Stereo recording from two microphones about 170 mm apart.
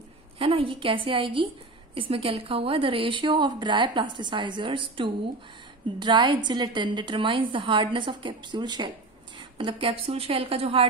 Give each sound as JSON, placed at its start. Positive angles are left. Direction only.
{"t": 0.4, "sound": "a woman's voice", "side_deg": -30}